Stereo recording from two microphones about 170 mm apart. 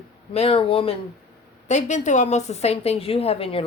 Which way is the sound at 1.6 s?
45° left (ahead or behind).